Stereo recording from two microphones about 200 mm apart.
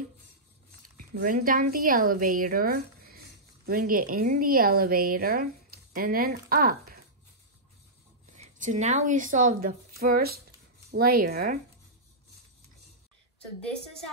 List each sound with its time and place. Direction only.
0.9 s a woman's voice: 45° right (ahead or behind)
8.3 s a woman's voice: 40° right (ahead or behind)